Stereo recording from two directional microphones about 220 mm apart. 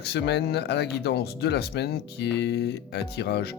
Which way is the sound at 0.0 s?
50° left (ahead or behind).